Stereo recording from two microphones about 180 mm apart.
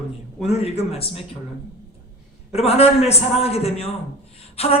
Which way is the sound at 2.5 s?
35° left (ahead or behind).